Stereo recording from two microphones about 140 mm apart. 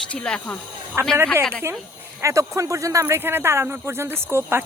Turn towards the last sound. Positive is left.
turn(degrees=-15)  # may be behind; listen again after turning